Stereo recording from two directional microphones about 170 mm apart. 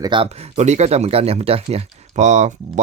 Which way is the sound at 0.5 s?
40° right (ahead or behind).